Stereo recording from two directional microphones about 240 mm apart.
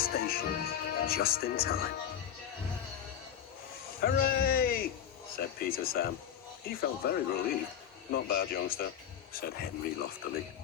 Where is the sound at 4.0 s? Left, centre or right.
Left.